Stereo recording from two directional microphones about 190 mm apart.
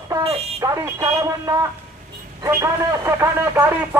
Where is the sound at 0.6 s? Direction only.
15° right (ahead or behind).